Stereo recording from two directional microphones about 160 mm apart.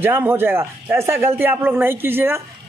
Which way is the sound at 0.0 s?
15° right (ahead or behind).